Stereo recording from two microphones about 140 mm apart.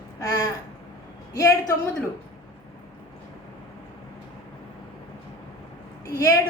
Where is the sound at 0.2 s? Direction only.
25° left (ahead or behind).